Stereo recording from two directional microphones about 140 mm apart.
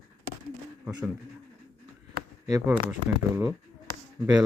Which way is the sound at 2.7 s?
15° right (ahead or behind).